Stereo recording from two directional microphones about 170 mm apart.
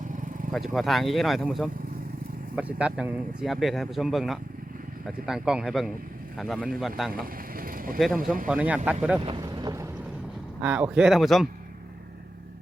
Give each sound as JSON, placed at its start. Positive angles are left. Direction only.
{"t": 0.5, "sound": "speech", "side_deg": 0}
{"t": 7.1, "sound": "vehicle", "side_deg": -55}
{"t": 7.9, "sound": "speech", "side_deg": 0}
{"t": 8.2, "sound": "speech", "side_deg": -55}
{"t": 8.4, "sound": "speech", "side_deg": -5}
{"t": 9.2, "sound": "vehicle", "side_deg": -30}
{"t": 10.6, "sound": "speech", "side_deg": -5}